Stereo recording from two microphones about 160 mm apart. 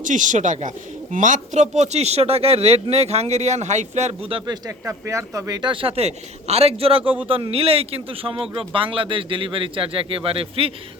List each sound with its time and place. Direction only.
0.0 s speech: 50° right (ahead or behind); by 4.5 s 35° right (ahead or behind)
4.9 s speech: 20° right (ahead or behind); by 7.0 s 35° right (ahead or behind)
7.0 s speech: 10° right (ahead or behind)
7.3 s speech: 35° right (ahead or behind)